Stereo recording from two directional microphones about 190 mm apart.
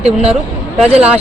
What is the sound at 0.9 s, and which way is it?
Speech, 5° right (ahead or behind).